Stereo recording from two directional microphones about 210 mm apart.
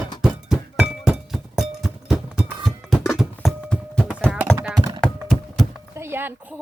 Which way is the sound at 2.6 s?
Centre (ahead or behind).